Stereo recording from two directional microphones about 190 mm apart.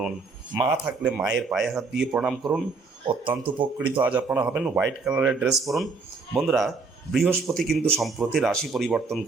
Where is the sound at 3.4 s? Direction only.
25° right (ahead or behind).